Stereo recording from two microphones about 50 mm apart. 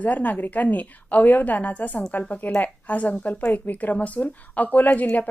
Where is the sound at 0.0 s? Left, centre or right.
Left.